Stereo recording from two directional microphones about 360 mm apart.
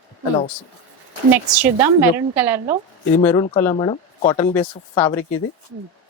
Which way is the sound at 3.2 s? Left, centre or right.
Centre.